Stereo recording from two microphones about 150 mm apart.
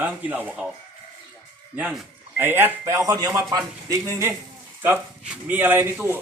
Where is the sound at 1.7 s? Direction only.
10° right (ahead or behind).